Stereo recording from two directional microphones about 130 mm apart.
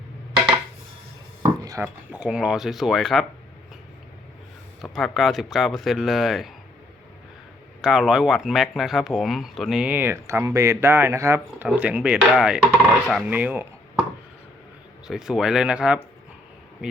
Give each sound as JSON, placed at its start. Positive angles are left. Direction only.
{"t": 1.4, "sound": "dishes", "side_deg": -30}
{"t": 1.8, "sound": "speech", "side_deg": -10}
{"t": 4.8, "sound": "speech", "side_deg": 0}
{"t": 7.8, "sound": "speech", "side_deg": -5}
{"t": 15.0, "sound": "speech", "side_deg": -5}